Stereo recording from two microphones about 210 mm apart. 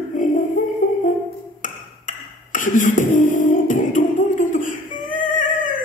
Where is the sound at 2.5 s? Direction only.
40° left (ahead or behind).